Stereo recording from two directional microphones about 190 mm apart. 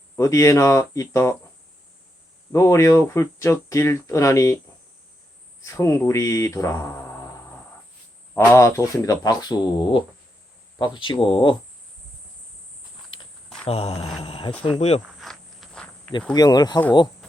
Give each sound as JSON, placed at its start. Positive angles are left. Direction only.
{"t": 0.2, "sound": "speech", "side_deg": 15}
{"t": 2.5, "sound": "speech", "side_deg": 15}
{"t": 5.7, "sound": "speech", "side_deg": 15}
{"t": 8.3, "sound": "speech", "side_deg": 15}
{"t": 10.8, "sound": "mantra", "side_deg": 25}
{"t": 13.1, "sound": "cricket", "side_deg": 25}
{"t": 13.7, "sound": "mantra", "side_deg": 30}
{"t": 14.6, "sound": "speech", "side_deg": 30}
{"t": 15.2, "sound": "insect", "side_deg": 0}
{"t": 16.3, "sound": "mantra", "side_deg": 20}